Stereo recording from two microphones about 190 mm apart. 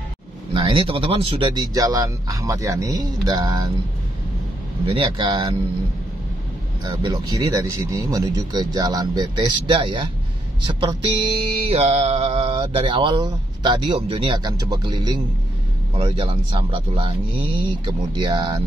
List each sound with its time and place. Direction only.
0.5 s speech: 25° right (ahead or behind)
4.8 s speech: 25° right (ahead or behind)
6.8 s speech: 25° right (ahead or behind)
10.7 s music: 25° right (ahead or behind)
12.6 s speech: 25° right (ahead or behind)